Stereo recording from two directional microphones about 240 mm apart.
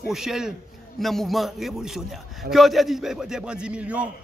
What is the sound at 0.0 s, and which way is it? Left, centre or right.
A man's voice, centre.